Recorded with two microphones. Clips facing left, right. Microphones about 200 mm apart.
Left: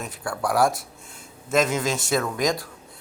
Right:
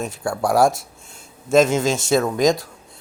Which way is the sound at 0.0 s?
25° right (ahead or behind).